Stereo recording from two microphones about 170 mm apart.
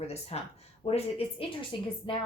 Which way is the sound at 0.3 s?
40° left (ahead or behind).